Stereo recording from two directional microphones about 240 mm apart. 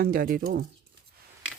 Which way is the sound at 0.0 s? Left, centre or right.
Right.